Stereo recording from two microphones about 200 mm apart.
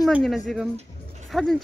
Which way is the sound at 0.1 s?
Centre (ahead or behind).